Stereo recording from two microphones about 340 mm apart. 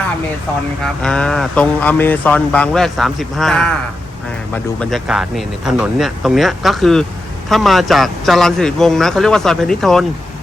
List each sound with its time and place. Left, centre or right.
1.0 s speech: centre
4.8 s speech: centre